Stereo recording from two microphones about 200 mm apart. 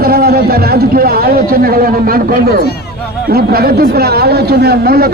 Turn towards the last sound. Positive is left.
turn(degrees=-50)  # may be behind; listen again after turning